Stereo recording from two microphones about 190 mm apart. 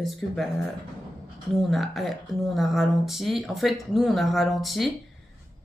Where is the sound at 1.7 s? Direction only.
Centre (ahead or behind).